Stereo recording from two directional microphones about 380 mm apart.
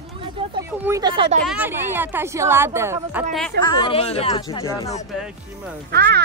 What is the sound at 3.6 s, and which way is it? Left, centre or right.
Speech, centre.